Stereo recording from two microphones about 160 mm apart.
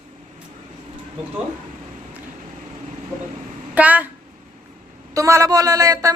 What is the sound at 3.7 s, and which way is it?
Speech, 10° right (ahead or behind).